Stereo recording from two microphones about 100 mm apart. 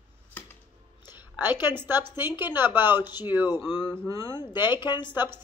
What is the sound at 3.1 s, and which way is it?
Speech, 45° left (ahead or behind).